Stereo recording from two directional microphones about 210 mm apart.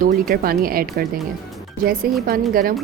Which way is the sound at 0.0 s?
45° right (ahead or behind).